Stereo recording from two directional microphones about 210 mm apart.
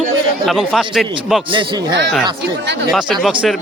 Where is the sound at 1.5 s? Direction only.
25° right (ahead or behind).